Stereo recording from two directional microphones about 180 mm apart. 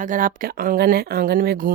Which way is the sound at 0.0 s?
45° right (ahead or behind).